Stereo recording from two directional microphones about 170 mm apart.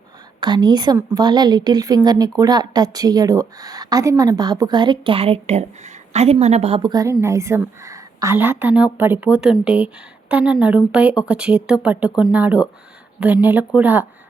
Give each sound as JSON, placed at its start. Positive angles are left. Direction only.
{"t": 0.3, "sound": "a woman's voice", "side_deg": -25}